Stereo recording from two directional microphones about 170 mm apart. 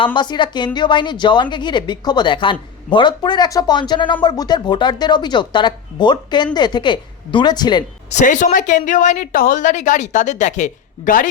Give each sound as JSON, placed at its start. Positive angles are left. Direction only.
{"t": 0.0, "sound": "a woman's voice", "side_deg": 25}
{"t": 8.1, "sound": "a woman's voice", "side_deg": 50}